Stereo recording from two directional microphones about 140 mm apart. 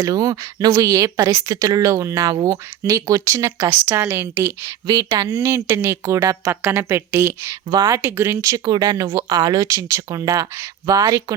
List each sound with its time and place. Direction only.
0.0 s speech: 25° right (ahead or behind)
4.9 s a woman's voice: 25° right (ahead or behind)